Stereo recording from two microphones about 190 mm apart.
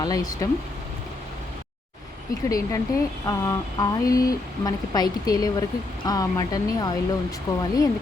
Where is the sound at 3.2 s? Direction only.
15° left (ahead or behind).